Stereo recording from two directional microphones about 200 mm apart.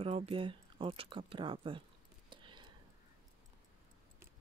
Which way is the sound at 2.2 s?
25° right (ahead or behind).